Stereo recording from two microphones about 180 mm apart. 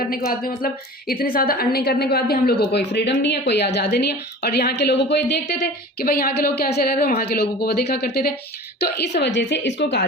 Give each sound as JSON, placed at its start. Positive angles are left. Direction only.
{"t": 0.3, "sound": "a woman's voice", "side_deg": 55}